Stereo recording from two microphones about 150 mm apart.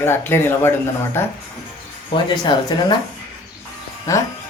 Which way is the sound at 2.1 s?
30° left (ahead or behind).